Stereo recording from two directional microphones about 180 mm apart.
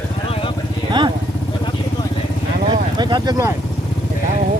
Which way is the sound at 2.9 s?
25° right (ahead or behind).